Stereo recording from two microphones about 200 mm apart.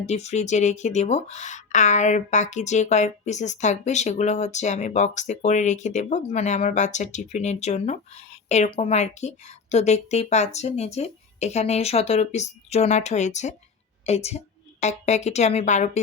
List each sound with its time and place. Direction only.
0.0 s a woman's voice: 35° left (ahead or behind)